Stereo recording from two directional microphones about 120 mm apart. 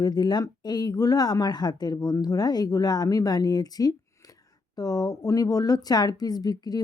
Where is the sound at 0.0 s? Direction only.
35° left (ahead or behind).